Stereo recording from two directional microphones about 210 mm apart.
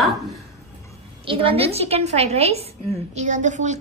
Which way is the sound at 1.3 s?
25° right (ahead or behind).